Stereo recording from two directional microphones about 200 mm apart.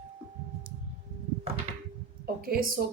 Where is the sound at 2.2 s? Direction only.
45° right (ahead or behind).